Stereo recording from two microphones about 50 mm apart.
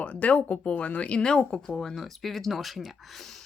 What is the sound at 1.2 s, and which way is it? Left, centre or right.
Speech, centre.